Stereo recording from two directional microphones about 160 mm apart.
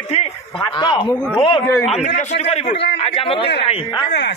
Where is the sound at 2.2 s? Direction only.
45° left (ahead or behind).